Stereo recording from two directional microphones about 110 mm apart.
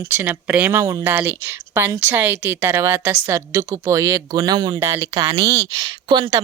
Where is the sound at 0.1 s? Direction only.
15° right (ahead or behind); by 4.8 s 40° right (ahead or behind).